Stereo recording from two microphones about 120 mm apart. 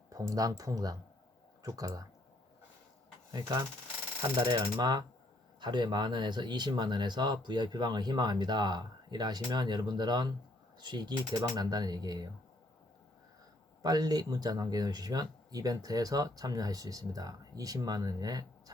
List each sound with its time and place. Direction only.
0.1 s speech: 30° right (ahead or behind)
4.4 s speech: 35° right (ahead or behind)
13.8 s speech: 35° right (ahead or behind)